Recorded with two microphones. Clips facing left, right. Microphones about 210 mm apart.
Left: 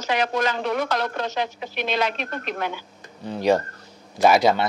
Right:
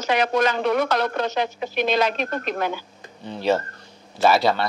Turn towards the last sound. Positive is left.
turn(degrees=20)  # may be behind; listen again after turning